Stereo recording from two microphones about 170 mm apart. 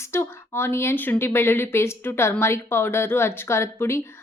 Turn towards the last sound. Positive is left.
turn(degrees=15)  # may be behind; listen again after turning